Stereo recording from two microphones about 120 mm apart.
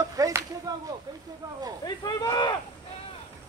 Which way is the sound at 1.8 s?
35° left (ahead or behind).